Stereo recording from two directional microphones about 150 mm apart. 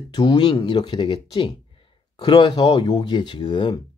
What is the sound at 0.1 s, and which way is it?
Speech, 30° left (ahead or behind).